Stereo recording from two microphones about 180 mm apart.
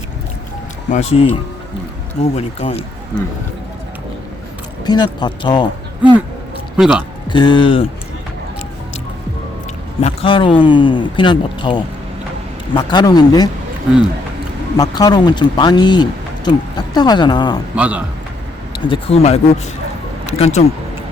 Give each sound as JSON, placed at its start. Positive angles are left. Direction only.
{"t": 0.9, "sound": "speech", "side_deg": 40}
{"t": 4.9, "sound": "speech", "side_deg": 25}
{"t": 6.7, "sound": "a man's voice", "side_deg": -5}
{"t": 7.3, "sound": "speech", "side_deg": 25}
{"t": 10.0, "sound": "speech", "side_deg": 30}
{"t": 14.8, "sound": "speech", "side_deg": 20}
{"t": 17.7, "sound": "speech", "side_deg": -10}
{"t": 18.9, "sound": "speech", "side_deg": 35}